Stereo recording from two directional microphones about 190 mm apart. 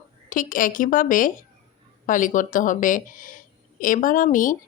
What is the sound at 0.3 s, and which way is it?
Speech, 45° left (ahead or behind).